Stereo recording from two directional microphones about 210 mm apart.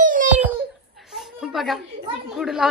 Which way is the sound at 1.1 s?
Centre (ahead or behind).